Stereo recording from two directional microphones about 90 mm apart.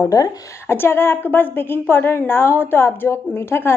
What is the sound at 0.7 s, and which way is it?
A woman's voice, 25° left (ahead or behind).